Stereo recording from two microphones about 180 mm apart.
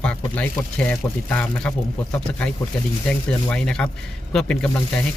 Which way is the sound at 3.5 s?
5° left (ahead or behind).